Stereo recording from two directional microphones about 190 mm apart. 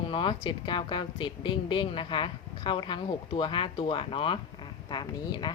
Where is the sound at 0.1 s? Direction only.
25° left (ahead or behind).